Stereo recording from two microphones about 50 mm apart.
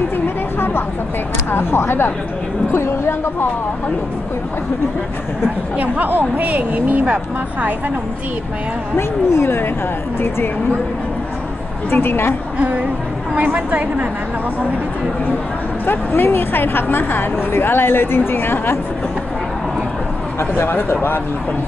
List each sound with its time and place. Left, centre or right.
1.5 s a woman's voice: left
5.8 s speech: right
8.9 s speech: left
11.9 s a woman's voice: left
12.5 s a woman's voice: right
15.8 s a woman's voice: left
20.3 s a woman's voice: left